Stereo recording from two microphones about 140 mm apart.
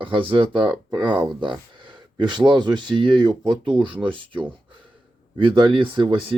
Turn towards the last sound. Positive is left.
turn(degrees=-35)  # may be behind; listen again after turning